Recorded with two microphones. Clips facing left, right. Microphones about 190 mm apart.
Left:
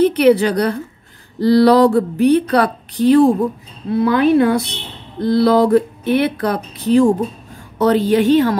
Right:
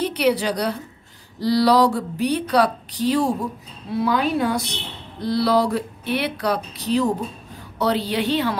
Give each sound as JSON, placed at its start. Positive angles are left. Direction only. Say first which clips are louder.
{"t": 0.0, "sound": "a woman's voice", "louder": "left 9 dB", "side_deg": 55}